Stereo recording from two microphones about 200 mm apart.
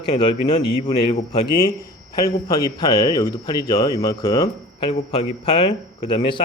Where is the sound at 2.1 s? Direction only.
20° left (ahead or behind).